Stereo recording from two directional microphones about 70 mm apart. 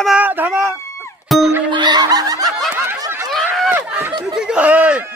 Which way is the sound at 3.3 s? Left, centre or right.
Centre.